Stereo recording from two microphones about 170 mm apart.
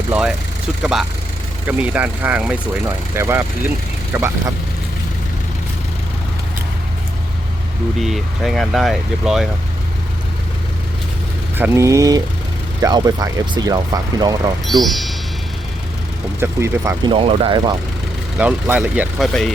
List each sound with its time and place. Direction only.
0.1 s speech: 5° right (ahead or behind)
8.0 s speech: centre (ahead or behind)
11.5 s speech: 15° right (ahead or behind)
14.7 s speech: centre (ahead or behind)
16.4 s speech: 15° right (ahead or behind)
17.1 s speech: 30° right (ahead or behind)
18.3 s speech: 10° right (ahead or behind)
19.3 s speech: 5° left (ahead or behind)